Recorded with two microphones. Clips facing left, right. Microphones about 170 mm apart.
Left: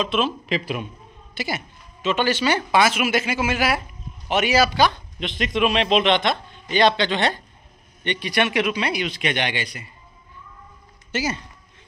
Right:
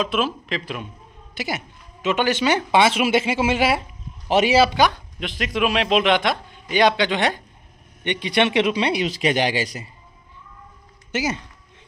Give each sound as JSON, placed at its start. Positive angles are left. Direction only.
{"t": 0.0, "sound": "a man's voice", "side_deg": -5}
{"t": 0.5, "sound": "a man's voice", "side_deg": 5}
{"t": 1.3, "sound": "a man's voice", "side_deg": -15}
{"t": 11.1, "sound": "a man's voice", "side_deg": -15}